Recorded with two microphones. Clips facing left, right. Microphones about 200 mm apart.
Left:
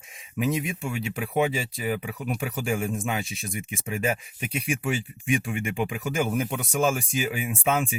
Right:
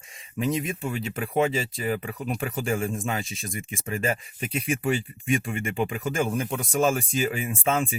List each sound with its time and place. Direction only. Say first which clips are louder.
0.3 s speech: even; 5° left (ahead or behind)